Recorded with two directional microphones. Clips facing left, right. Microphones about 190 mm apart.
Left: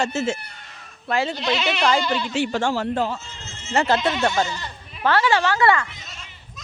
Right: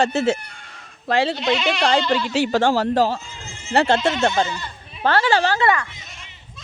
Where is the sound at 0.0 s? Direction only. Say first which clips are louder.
Right 4 dB; 35° right (ahead or behind).